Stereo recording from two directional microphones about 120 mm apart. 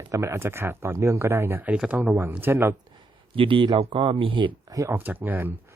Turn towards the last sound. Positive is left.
turn(degrees=-20)  # may be behind; listen again after turning